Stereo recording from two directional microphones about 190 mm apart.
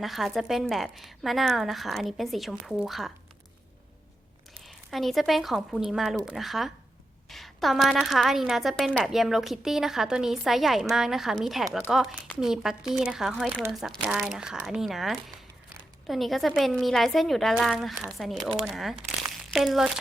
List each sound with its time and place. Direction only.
0.0 s a woman's voice: centre (ahead or behind)
4.6 s a woman's voice: centre (ahead or behind)